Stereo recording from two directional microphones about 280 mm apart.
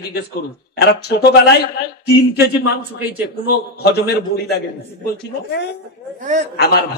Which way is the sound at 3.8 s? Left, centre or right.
Left.